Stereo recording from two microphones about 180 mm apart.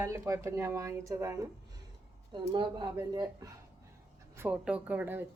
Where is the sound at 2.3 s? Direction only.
25° right (ahead or behind).